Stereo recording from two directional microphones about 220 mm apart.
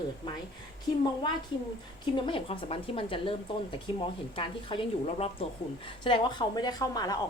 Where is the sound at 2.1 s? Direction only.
25° left (ahead or behind).